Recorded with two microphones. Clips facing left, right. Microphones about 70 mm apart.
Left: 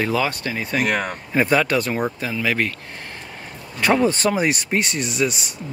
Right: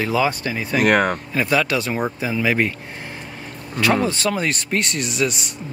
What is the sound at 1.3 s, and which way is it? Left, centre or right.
Speech, centre.